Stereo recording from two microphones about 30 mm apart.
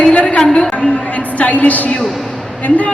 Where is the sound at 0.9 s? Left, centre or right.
Left.